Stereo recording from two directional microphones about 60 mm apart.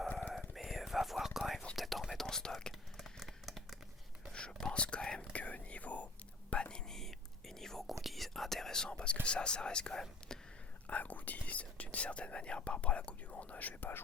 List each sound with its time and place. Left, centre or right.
0.3 s whispering: centre
2.7 s a sound: centre
4.3 s whispering: centre
9.2 s speech: centre
10.8 s speech: left